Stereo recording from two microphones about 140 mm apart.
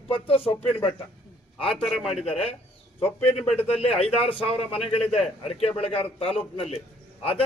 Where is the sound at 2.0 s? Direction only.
45° left (ahead or behind).